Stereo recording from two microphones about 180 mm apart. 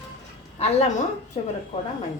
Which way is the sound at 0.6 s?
45° left (ahead or behind).